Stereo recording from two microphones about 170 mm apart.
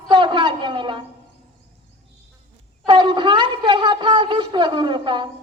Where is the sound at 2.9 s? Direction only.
30° right (ahead or behind).